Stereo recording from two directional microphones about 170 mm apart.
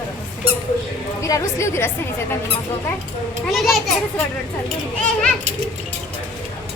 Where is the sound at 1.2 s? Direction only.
20° left (ahead or behind).